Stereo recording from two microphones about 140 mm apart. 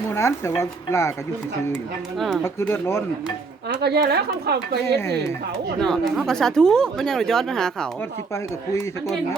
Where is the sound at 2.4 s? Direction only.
15° left (ahead or behind).